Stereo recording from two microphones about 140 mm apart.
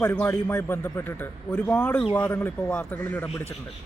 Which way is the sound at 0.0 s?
15° left (ahead or behind).